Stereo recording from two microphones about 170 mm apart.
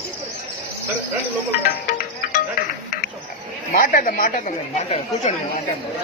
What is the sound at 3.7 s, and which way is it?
Speech, 55° left (ahead or behind).